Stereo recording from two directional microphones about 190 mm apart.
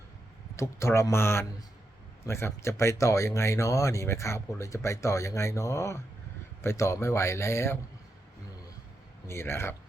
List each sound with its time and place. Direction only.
0.5 s speech: 15° left (ahead or behind)
9.2 s speech: 15° left (ahead or behind)